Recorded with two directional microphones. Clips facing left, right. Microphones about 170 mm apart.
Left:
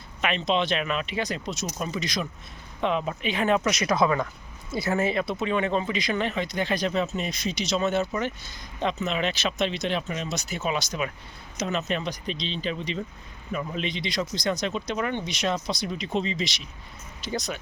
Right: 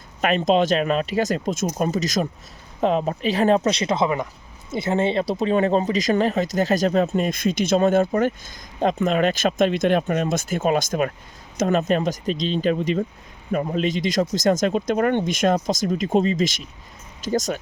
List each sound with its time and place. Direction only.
0.2 s speech: 45° right (ahead or behind)